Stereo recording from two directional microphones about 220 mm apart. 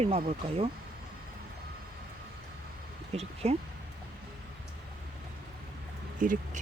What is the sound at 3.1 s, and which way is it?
Speech, 30° right (ahead or behind).